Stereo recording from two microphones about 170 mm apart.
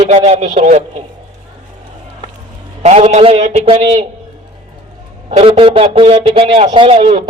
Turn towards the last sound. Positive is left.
turn(degrees=-35)  # may be behind; listen again after turning